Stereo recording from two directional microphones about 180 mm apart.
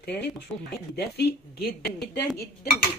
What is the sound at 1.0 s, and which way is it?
Speech, 60° left (ahead or behind).